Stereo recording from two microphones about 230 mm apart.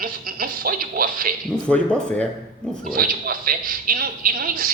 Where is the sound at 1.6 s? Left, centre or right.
Centre.